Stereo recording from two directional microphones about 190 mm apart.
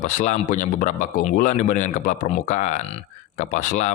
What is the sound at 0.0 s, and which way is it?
Speech, 40° left (ahead or behind).